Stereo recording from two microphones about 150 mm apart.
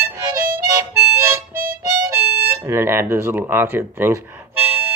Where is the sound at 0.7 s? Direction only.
20° right (ahead or behind).